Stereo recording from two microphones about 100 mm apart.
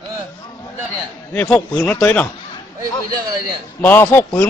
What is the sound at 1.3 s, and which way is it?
Speech, 15° left (ahead or behind).